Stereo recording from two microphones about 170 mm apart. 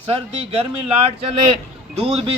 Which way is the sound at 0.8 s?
35° right (ahead or behind).